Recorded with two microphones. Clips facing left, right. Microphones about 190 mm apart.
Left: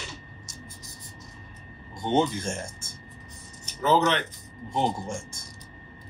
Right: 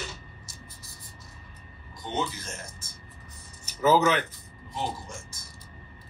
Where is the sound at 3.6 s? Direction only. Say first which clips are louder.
Right 1 dB; 5° right (ahead or behind).